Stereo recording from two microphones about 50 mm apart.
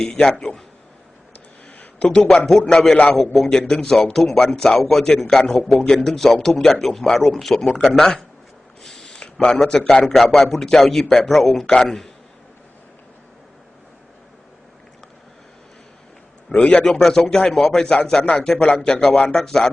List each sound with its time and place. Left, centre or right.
0.0 s a man's voice: centre
2.0 s a man's voice: centre
10.2 s a man's voice: centre
11.6 s a man's voice: centre
16.6 s a man's voice: left
17.0 s a man's voice: centre
18.2 s a man's voice: left